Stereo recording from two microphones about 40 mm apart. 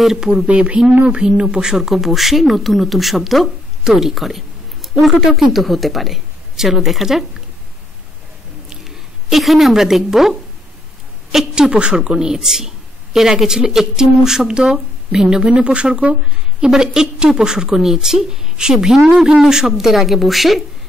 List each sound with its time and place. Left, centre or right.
0.2 s a woman's voice: centre
0.5 s speech: right
1.9 s speech: centre
8.8 s speech: centre
11.5 s a woman's voice: right
19.7 s speech: centre